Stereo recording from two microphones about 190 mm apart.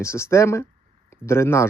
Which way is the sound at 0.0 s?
15° left (ahead or behind).